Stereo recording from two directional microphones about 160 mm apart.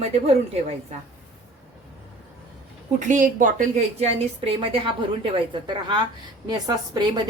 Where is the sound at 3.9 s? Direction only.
40° right (ahead or behind).